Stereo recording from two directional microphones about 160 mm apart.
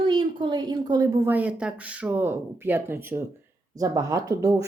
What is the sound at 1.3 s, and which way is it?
Speech, 10° right (ahead or behind).